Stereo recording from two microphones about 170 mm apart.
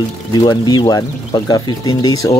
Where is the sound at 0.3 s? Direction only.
25° left (ahead or behind).